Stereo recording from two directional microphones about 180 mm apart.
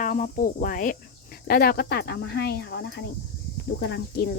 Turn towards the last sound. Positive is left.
turn(degrees=70)  # may be behind; listen again after turning